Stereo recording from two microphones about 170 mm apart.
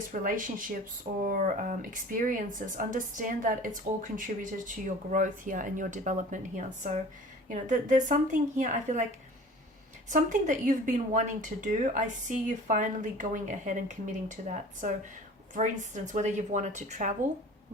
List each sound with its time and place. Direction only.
0.1 s speech: 50° right (ahead or behind)
10.1 s speech: 45° right (ahead or behind)